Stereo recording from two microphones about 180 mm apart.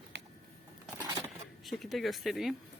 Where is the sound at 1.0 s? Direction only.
20° right (ahead or behind).